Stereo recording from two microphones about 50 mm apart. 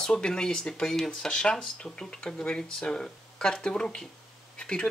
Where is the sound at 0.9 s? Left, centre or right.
Centre.